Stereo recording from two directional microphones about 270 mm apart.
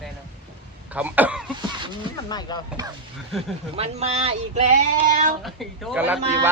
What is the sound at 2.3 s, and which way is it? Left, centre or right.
Speech, centre.